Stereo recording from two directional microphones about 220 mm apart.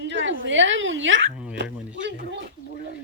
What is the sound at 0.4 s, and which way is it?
Speech, 60° right (ahead or behind).